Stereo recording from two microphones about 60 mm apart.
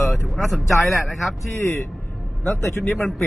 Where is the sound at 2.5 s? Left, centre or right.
Left.